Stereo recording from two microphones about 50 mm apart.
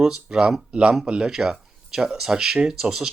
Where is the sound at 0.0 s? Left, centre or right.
Centre.